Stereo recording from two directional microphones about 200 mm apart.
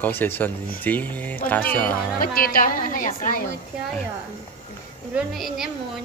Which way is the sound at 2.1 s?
45° left (ahead or behind).